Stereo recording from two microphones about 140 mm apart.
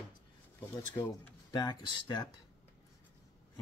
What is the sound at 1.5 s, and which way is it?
Speech, 35° left (ahead or behind).